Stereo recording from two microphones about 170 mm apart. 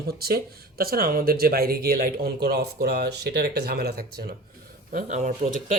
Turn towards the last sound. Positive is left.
turn(degrees=-50)  # may be behind; listen again after turning